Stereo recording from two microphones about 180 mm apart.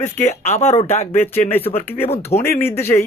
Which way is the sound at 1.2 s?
10° left (ahead or behind).